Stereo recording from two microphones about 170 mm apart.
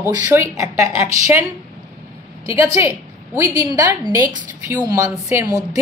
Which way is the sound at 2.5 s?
15° right (ahead or behind).